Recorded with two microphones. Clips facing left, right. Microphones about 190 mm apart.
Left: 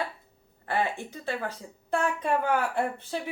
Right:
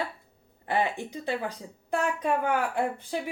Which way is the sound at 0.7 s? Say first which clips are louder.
Right 1 dB; 15° right (ahead or behind).